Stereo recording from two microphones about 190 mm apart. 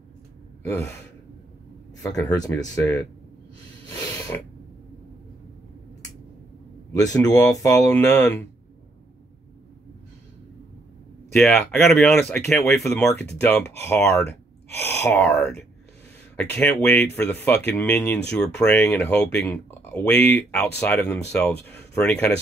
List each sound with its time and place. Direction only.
0.7 s speech: 15° left (ahead or behind)
2.0 s speech: 15° left (ahead or behind)
6.9 s speech: 15° left (ahead or behind)
11.3 s speech: 10° left (ahead or behind)
14.7 s gasp: 15° left (ahead or behind)
15.3 s speech: 5° left (ahead or behind)